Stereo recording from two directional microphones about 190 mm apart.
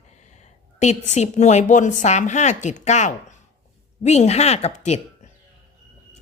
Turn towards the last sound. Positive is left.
turn(degrees=35)  # may be behind; listen again after turning